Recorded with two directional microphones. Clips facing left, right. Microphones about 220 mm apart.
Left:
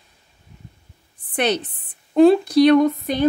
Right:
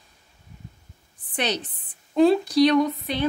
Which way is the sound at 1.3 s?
55° left (ahead or behind).